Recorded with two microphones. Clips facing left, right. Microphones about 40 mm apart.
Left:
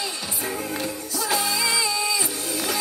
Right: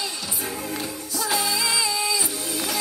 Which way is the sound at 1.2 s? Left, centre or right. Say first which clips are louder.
Left 1 dB; centre.